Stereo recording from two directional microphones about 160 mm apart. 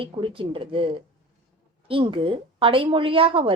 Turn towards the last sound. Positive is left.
turn(degrees=-35)  # may be behind; listen again after turning